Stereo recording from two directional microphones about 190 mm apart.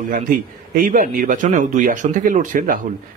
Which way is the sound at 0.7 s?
45° right (ahead or behind).